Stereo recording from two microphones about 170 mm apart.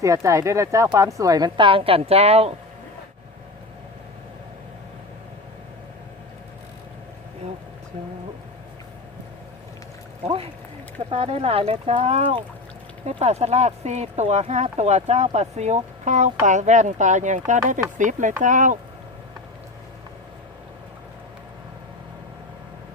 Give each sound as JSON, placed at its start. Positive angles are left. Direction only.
{"t": 0.0, "sound": "a woman's voice", "side_deg": -20}
{"t": 11.1, "sound": "a woman's voice", "side_deg": -35}